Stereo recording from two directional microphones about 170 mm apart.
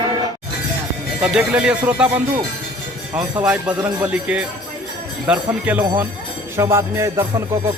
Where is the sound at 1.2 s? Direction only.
5° right (ahead or behind).